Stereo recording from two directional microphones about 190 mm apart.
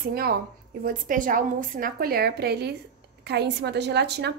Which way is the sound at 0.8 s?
45° right (ahead or behind).